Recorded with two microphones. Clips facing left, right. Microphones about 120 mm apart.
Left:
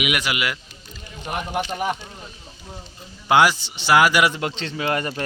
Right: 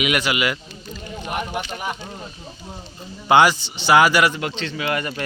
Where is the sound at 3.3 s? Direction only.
5° left (ahead or behind).